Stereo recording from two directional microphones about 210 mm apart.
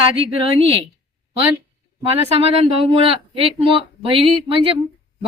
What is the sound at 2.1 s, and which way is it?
Speech, 30° right (ahead or behind).